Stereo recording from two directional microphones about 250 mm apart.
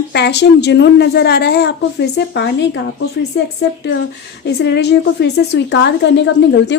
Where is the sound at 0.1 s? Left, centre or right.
Left.